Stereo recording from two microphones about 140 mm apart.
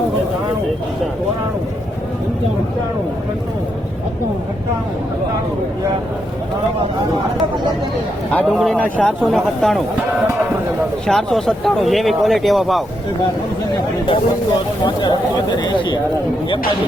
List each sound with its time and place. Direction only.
8.5 s speech: 5° left (ahead or behind)
11.0 s speech: 5° left (ahead or behind)
14.1 s speech: 35° left (ahead or behind)